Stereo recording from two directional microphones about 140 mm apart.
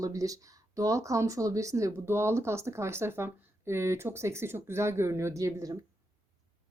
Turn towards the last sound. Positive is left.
turn(degrees=-25)  # may be behind; listen again after turning